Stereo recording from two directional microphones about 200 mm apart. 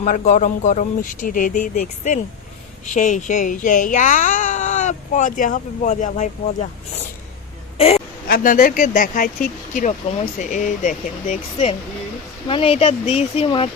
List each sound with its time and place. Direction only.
0.0 s speech: 40° left (ahead or behind)
7.8 s a sound: 30° left (ahead or behind)
8.3 s speech: 40° left (ahead or behind)
12.5 s speech: 25° left (ahead or behind)